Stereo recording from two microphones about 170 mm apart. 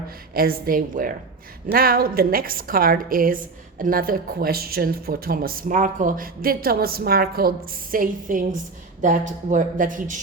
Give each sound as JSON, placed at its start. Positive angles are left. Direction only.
{"t": 0.3, "sound": "a woman's voice", "side_deg": -60}